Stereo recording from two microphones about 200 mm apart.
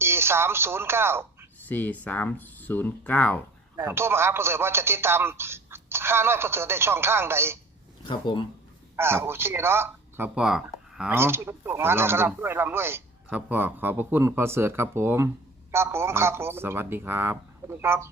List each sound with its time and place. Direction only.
0.0 s a woman's voice: 10° right (ahead or behind)
1.6 s speech: 10° left (ahead or behind)
3.8 s a man's voice: 10° right (ahead or behind)
8.0 s speech: 25° left (ahead or behind)
9.0 s a man's voice: 10° right (ahead or behind)